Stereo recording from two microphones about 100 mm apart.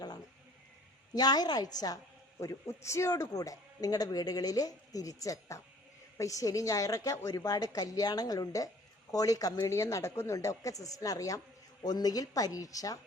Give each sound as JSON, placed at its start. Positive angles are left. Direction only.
{"t": 1.1, "sound": "speech", "side_deg": 40}
{"t": 2.4, "sound": "speech", "side_deg": 30}